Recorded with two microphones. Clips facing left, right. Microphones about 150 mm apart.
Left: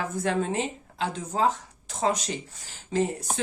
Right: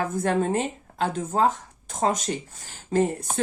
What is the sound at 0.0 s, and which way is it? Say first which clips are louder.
Speech: right 3 dB; 45° right (ahead or behind).